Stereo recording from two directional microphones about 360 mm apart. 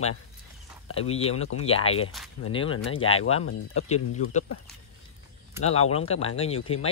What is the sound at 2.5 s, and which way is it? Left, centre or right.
Speech, centre.